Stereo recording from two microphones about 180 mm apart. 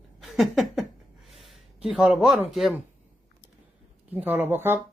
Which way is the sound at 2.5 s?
Centre (ahead or behind).